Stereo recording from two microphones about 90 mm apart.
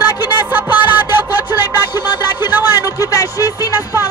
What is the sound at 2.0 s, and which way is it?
Music, 25° right (ahead or behind).